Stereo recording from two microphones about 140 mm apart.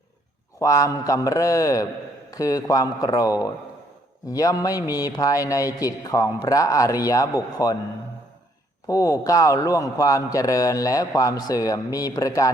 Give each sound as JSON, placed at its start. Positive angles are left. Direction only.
{"t": 0.6, "sound": "a man's voice", "side_deg": 25}
{"t": 8.9, "sound": "a man's voice", "side_deg": 25}